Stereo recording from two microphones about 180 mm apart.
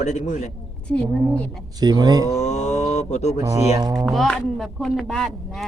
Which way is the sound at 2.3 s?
40° left (ahead or behind).